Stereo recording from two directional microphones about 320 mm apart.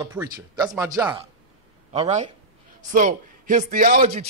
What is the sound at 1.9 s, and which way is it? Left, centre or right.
A man's voice, centre.